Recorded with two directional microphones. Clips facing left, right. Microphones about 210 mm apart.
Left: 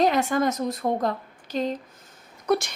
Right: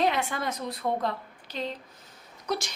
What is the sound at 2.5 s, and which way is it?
Whimper, 55° left (ahead or behind).